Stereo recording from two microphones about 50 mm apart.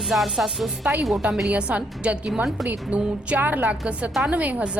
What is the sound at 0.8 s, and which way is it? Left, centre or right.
A woman's voice, right.